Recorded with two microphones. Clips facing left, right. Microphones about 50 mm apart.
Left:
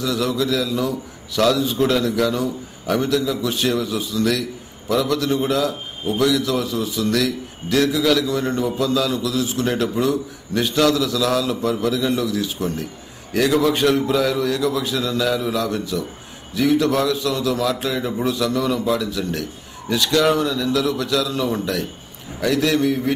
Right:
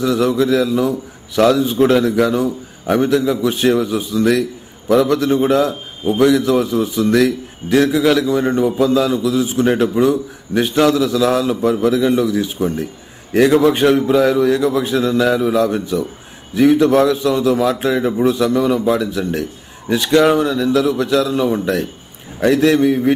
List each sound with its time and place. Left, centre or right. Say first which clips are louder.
0.0 s a man's voice: right 6 dB; right
0.7 s a man's voice: right 5 dB; centre
1.4 s a man's voice: right 5 dB; right